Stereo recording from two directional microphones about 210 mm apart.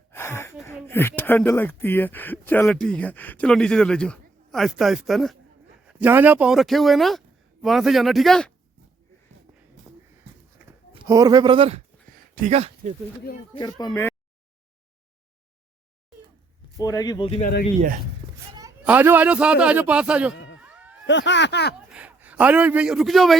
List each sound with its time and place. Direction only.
0.1 s gasp: 10° left (ahead or behind)
0.9 s speech: 10° left (ahead or behind)
10.9 s a man's voice: 15° right (ahead or behind)
12.3 s speech: 35° right (ahead or behind)
13.5 s speech: 20° left (ahead or behind)
16.7 s speech: 15° left (ahead or behind)
18.9 s a man's voice: 10° right (ahead or behind)
20.3 s a sound: 65° left (ahead or behind)
20.6 s cat: 5° right (ahead or behind)
21.1 s speech: 55° left (ahead or behind)
21.9 s a man's voice: 5° right (ahead or behind)